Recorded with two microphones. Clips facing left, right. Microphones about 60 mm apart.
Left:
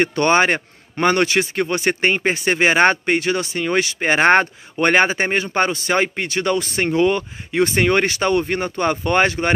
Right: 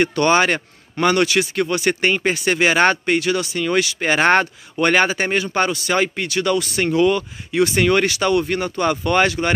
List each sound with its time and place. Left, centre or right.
0.0 s a man's voice: left